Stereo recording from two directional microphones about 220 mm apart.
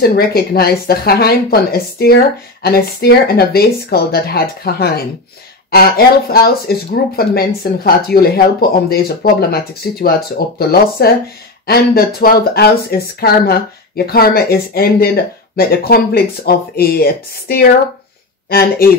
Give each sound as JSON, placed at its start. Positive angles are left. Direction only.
{"t": 0.0, "sound": "speech", "side_deg": 45}